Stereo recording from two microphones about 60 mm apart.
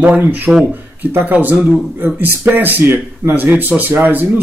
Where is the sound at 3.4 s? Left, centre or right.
Right.